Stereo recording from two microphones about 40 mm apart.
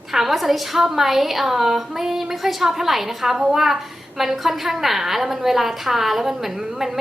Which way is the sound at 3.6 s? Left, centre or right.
Centre.